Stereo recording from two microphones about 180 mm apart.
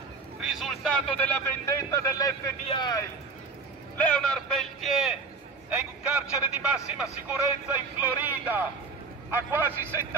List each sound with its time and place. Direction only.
0.5 s a man's voice: centre (ahead or behind); by 2.5 s 20° left (ahead or behind)
2.6 s a man's voice: 30° left (ahead or behind)
3.9 s a man's voice: 5° left (ahead or behind); by 10.0 s 10° right (ahead or behind)